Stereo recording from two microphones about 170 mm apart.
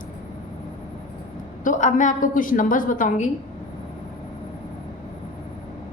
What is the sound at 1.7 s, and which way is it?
Speech, 50° left (ahead or behind).